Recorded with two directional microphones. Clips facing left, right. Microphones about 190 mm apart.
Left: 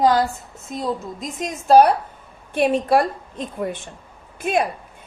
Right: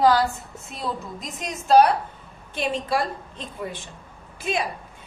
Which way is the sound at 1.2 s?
50° left (ahead or behind).